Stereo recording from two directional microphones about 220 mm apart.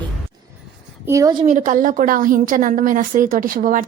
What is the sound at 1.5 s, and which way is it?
A woman's voice, 35° right (ahead or behind).